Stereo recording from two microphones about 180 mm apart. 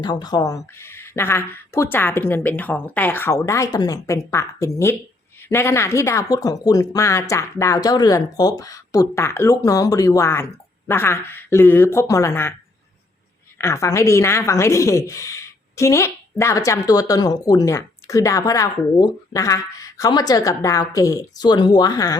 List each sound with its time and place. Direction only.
0.0 s speech: 25° left (ahead or behind)
13.6 s speech: 15° left (ahead or behind)